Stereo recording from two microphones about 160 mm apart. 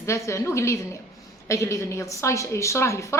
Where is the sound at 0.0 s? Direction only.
20° left (ahead or behind).